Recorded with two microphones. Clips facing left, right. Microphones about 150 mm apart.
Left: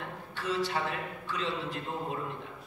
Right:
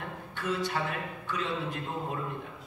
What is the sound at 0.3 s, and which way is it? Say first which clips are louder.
A man's voice: even; 55° right (ahead or behind).